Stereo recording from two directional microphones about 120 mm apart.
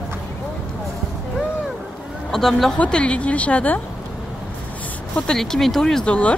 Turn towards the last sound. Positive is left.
turn(degrees=10)  # may be behind; listen again after turning